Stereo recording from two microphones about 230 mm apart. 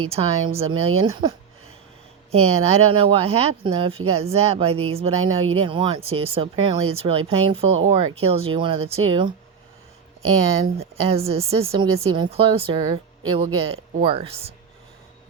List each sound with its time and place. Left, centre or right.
0.2 s speech: right
2.3 s speech: right
10.8 s speech: right